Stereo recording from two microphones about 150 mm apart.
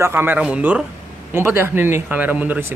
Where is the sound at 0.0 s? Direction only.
15° right (ahead or behind).